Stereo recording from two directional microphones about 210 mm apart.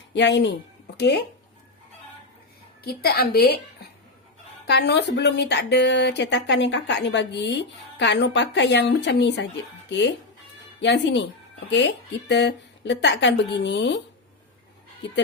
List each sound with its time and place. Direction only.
0.1 s a woman's voice: 55° left (ahead or behind)
2.8 s a woman's voice: 45° left (ahead or behind)
4.6 s speech: 50° left (ahead or behind)
10.8 s speech: 55° left (ahead or behind)